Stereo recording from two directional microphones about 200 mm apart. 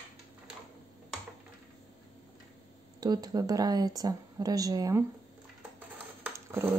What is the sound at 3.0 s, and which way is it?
Speech, 20° right (ahead or behind).